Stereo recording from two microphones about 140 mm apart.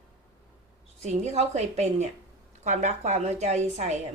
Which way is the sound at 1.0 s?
50° right (ahead or behind).